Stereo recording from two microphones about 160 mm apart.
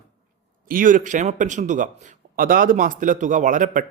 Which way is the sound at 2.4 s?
60° right (ahead or behind).